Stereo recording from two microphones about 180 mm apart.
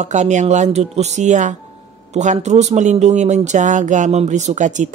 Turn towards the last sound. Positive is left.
turn(degrees=-40)  # may be behind; listen again after turning